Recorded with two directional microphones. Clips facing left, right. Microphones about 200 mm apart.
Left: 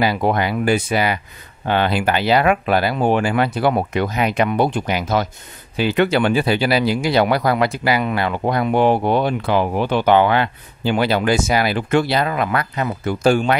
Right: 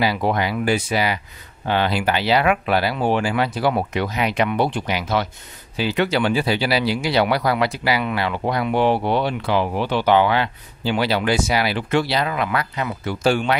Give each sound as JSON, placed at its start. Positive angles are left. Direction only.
{"t": 0.0, "sound": "speech", "side_deg": 50}
{"t": 5.8, "sound": "speech", "side_deg": 55}